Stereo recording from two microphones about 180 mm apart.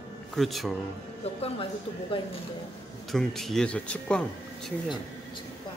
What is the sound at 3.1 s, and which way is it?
Speech, centre (ahead or behind).